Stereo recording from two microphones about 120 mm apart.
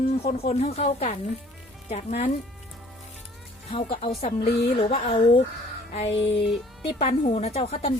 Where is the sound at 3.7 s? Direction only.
55° left (ahead or behind).